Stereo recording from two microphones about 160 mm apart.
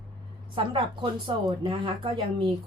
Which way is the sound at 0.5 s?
30° right (ahead or behind).